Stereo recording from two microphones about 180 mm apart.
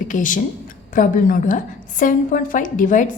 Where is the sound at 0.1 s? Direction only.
45° left (ahead or behind).